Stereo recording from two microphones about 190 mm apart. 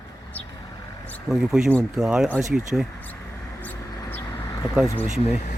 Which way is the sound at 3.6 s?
10° left (ahead or behind).